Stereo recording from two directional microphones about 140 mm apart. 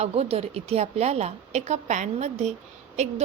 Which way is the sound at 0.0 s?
45° right (ahead or behind).